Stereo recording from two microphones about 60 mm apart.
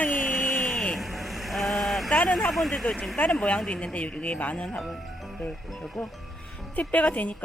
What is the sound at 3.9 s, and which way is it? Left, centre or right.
Speech, left.